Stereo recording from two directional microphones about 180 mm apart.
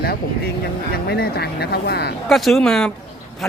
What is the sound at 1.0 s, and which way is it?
Speech, 65° left (ahead or behind).